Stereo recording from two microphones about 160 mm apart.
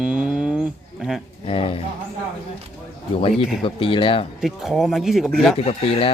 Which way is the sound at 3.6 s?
35° left (ahead or behind).